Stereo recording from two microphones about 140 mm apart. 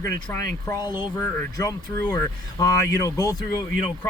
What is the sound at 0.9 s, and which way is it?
Speech, 15° right (ahead or behind).